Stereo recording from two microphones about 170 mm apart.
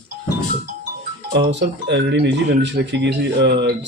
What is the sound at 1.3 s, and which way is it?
Speech, 85° right.